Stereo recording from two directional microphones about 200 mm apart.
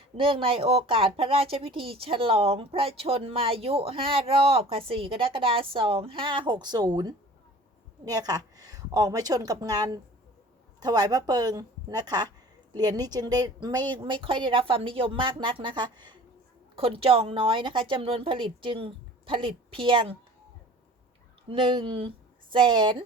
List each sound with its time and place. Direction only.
0.2 s speech: 25° right (ahead or behind)
21.5 s speech: 25° right (ahead or behind)